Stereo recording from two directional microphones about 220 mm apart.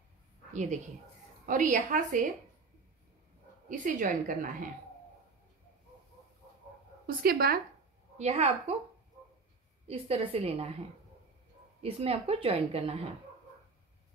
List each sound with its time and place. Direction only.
0.5 s a woman's voice: 35° right (ahead or behind)
3.6 s a woman's voice: 35° right (ahead or behind)
7.1 s speech: 45° right (ahead or behind)
8.2 s a woman's voice: 30° right (ahead or behind)
9.8 s a woman's voice: 25° right (ahead or behind)
11.8 s a woman's voice: 25° right (ahead or behind)